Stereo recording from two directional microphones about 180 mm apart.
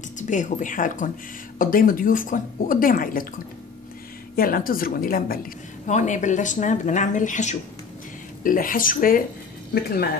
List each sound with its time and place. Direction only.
0.2 s a woman's voice: 45° left (ahead or behind)
4.4 s a woman's voice: 55° left (ahead or behind)